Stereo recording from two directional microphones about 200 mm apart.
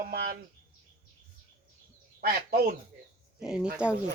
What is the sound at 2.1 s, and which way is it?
Speech, 50° right (ahead or behind).